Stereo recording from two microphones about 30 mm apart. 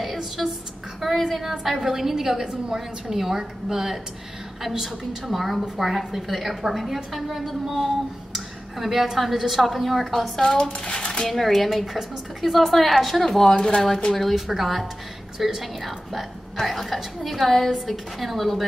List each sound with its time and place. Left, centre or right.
0.0 s a sound: centre
1.0 s a woman's voice: centre
1.4 s a woman's voice: centre
10.4 s speech: left
11.2 s a woman's voice: centre
14.1 s a woman's voice: centre